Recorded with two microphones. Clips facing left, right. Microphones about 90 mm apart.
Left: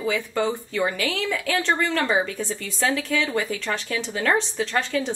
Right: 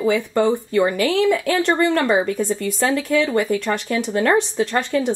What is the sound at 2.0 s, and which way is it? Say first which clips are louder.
Speech: right 5 dB; 10° right (ahead or behind).